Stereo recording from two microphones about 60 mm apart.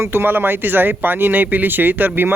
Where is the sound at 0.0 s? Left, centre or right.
Right.